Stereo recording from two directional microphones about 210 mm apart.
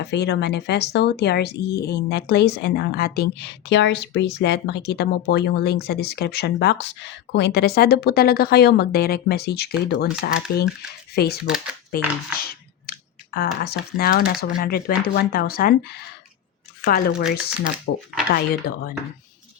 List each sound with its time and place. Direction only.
0.0 s speech: 55° left (ahead or behind)
11.4 s speech: centre (ahead or behind)
11.9 s speech: 45° left (ahead or behind)
18.7 s speech: 45° left (ahead or behind)